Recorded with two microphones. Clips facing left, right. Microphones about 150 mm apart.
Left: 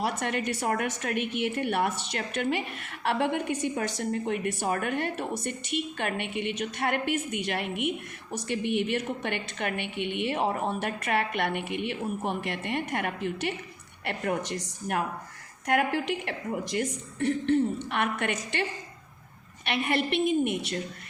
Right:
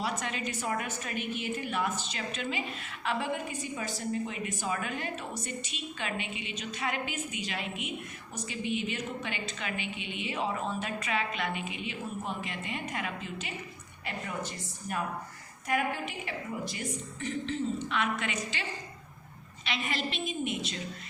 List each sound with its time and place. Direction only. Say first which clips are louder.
0.0 s a woman's voice: left 5 dB; 60° left (ahead or behind)
19.6 s a woman's voice: left 6 dB; 60° left (ahead or behind)